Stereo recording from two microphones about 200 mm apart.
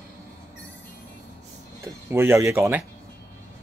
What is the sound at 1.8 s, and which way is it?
Speech, 10° right (ahead or behind).